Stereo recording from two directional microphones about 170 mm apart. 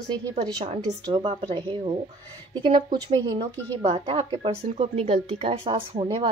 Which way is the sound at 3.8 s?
35° right (ahead or behind).